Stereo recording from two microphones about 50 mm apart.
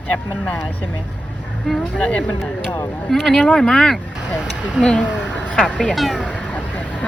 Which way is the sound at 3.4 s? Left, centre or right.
Centre.